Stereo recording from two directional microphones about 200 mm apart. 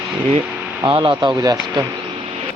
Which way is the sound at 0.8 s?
25° right (ahead or behind).